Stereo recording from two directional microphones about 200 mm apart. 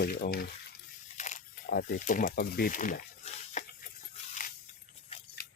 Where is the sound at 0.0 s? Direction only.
50° left (ahead or behind).